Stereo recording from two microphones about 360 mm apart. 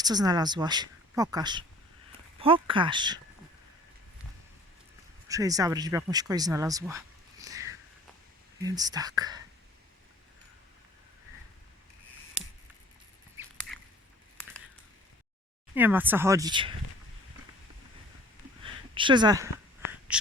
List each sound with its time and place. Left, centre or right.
0.0 s speech: centre
5.3 s speech: centre
7.4 s a sound: centre
8.6 s speech: centre
15.7 s speech: centre
18.6 s a sound: centre